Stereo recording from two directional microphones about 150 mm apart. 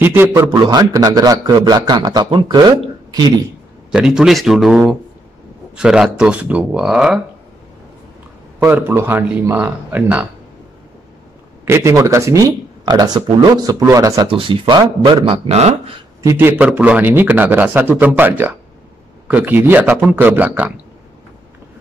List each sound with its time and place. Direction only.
0.0 s a man's voice: 15° right (ahead or behind)
0.5 s speech: 25° right (ahead or behind)
3.1 s a sound: 25° right (ahead or behind)
3.9 s speech: 5° right (ahead or behind)
8.5 s a man's voice: 10° right (ahead or behind)
11.6 s speech: 20° right (ahead or behind)
14.3 s speech: 35° right (ahead or behind)
16.2 s a man's voice: 15° right (ahead or behind)